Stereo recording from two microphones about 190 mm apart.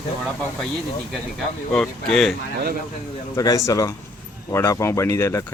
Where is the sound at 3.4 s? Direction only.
15° left (ahead or behind).